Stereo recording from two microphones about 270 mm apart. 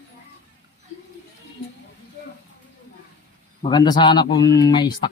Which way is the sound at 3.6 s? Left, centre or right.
Centre.